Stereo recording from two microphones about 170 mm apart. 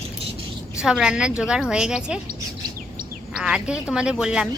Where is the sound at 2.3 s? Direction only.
55° right (ahead or behind).